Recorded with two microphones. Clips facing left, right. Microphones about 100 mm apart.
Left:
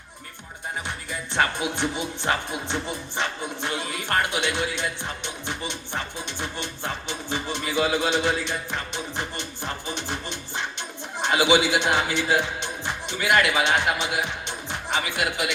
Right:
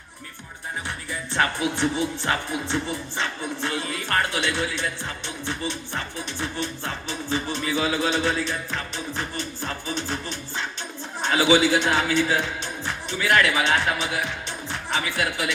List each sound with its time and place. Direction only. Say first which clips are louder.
1.3 s music: right 1 dB; 20° left (ahead or behind)
12.1 s speech: right 1 dB; 20° left (ahead or behind)